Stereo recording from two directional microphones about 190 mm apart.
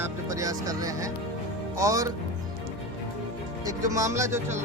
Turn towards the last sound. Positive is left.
turn(degrees=-15)  # may be behind; listen again after turning